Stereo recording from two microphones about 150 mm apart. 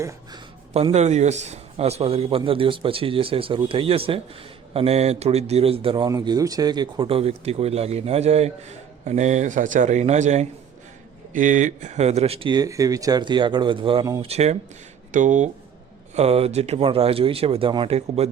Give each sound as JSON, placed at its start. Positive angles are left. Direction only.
{"t": 0.7, "sound": "a man's voice", "side_deg": -45}
{"t": 6.1, "sound": "a man's voice", "side_deg": -25}
{"t": 15.1, "sound": "speech", "side_deg": -55}
{"t": 16.1, "sound": "a man's voice", "side_deg": -40}
{"t": 18.2, "sound": "a man's voice", "side_deg": -45}